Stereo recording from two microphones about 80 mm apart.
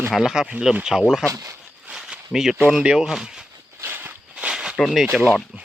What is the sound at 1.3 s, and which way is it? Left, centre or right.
Speech, right.